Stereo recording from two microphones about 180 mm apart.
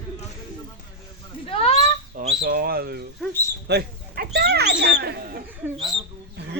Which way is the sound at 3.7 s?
65° right (ahead or behind).